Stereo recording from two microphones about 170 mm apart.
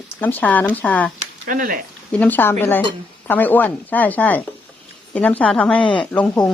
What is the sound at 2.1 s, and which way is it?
Speech, 10° left (ahead or behind).